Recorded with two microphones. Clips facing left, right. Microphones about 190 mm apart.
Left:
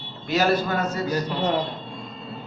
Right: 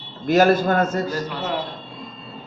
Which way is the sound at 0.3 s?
50° right (ahead or behind).